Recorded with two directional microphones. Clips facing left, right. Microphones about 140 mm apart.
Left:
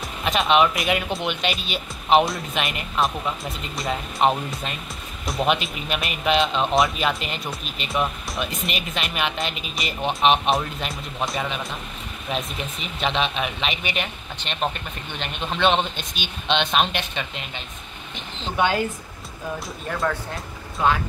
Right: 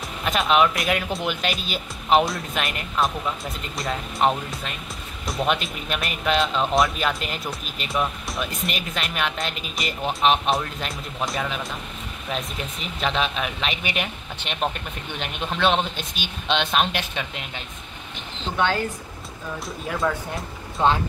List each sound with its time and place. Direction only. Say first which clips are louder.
0.2 s speech: left 1 dB; centre (ahead or behind)
13.0 s speech: left 1 dB; centre (ahead or behind)
18.6 s speech: left 2 dB; 10° left (ahead or behind)
20.0 s speech: right 1 dB; 5° right (ahead or behind)
20.8 s speech: right 1 dB; 30° right (ahead or behind)